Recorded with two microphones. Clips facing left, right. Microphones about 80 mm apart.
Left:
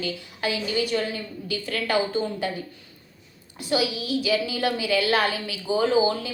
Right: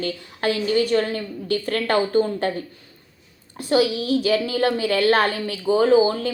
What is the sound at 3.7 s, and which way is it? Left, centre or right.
A child's voice, right.